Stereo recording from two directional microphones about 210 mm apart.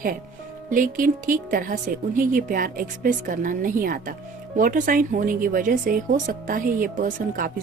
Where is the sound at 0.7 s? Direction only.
40° right (ahead or behind).